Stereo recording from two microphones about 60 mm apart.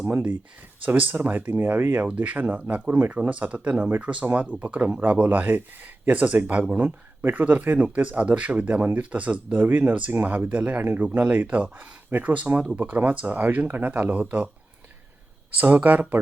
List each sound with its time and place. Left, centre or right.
0.1 s speech: right
15.6 s speech: right